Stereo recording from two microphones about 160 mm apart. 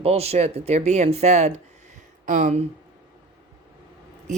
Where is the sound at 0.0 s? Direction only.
40° right (ahead or behind).